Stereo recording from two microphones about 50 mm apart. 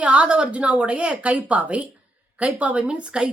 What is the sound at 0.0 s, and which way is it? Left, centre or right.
Speech, right.